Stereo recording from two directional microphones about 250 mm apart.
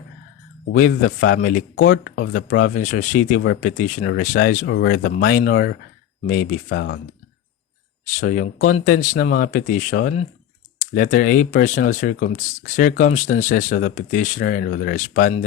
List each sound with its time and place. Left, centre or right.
0.8 s speech: left
6.7 s speech: left
8.2 s speech: left